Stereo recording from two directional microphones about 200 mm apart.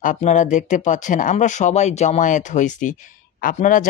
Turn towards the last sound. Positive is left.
turn(degrees=40)  # may be behind; listen again after turning